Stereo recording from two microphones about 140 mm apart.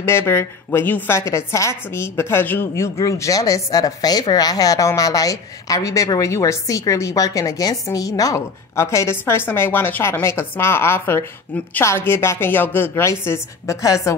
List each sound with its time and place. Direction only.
0.0 s a woman's voice: 20° left (ahead or behind)